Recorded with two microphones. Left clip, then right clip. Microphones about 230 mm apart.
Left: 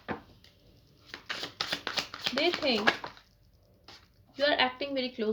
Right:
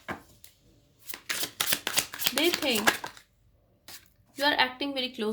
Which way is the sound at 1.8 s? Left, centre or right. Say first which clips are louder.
Right 4 dB; right.